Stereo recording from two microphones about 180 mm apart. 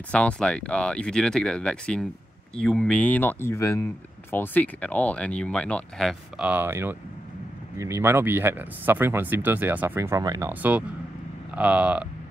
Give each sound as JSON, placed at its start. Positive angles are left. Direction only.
{"t": 0.1, "sound": "speech", "side_deg": 5}
{"t": 10.5, "sound": "speech", "side_deg": -10}